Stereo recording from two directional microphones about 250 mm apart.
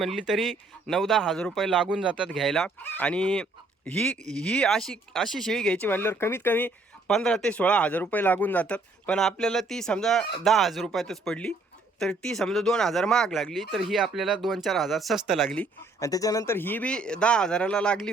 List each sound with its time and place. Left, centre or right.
0.0 s speech: centre
16.0 s speech: centre